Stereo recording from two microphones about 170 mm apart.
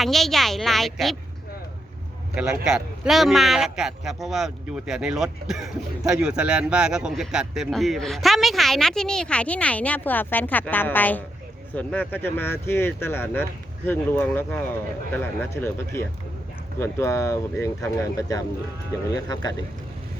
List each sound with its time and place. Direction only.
0.0 s a man's voice: centre (ahead or behind)
2.3 s a man's voice: 5° right (ahead or behind); by 19.6 s 25° left (ahead or behind)